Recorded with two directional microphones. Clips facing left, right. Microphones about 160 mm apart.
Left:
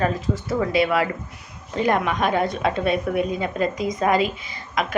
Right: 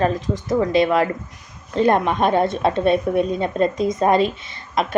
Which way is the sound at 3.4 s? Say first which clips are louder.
Right 4 dB; 30° right (ahead or behind).